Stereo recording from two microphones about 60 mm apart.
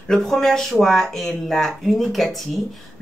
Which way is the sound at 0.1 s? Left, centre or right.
Centre.